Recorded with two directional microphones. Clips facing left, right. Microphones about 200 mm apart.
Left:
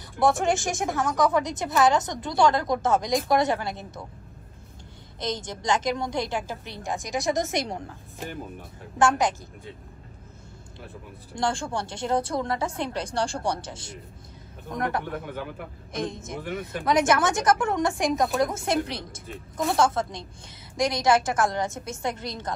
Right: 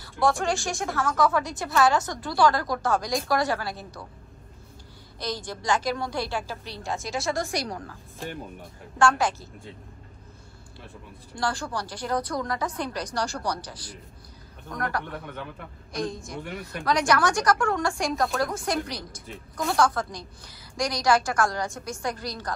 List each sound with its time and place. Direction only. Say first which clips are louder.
0.0 s speech: left 2 dB; 20° left (ahead or behind)
5.2 s speech: left 2 dB; 20° left (ahead or behind)
11.3 s speech: left 2 dB; 25° left (ahead or behind)
15.0 s speech: left 4 dB; 5° left (ahead or behind)
15.9 s speech: even; 20° left (ahead or behind)
16.3 s speech: left 3 dB; centre (ahead or behind)
16.8 s speech: left 1 dB; 20° left (ahead or behind)